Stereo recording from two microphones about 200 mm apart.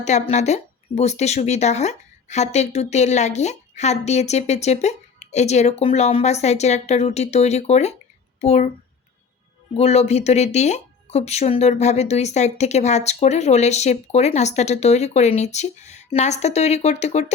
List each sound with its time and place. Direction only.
0.0 s speech: 35° left (ahead or behind)
9.7 s speech: 30° left (ahead or behind)